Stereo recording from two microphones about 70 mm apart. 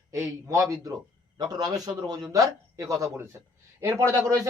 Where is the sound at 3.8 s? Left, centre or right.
Right.